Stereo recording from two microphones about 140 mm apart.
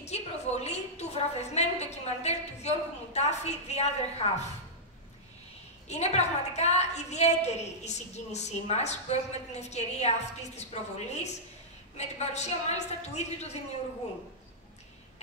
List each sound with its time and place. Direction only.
0.0 s a woman's voice: 50° left (ahead or behind)
5.9 s a woman's voice: 55° left (ahead or behind)